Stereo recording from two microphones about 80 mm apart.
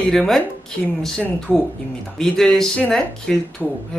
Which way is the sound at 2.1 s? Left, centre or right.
Centre.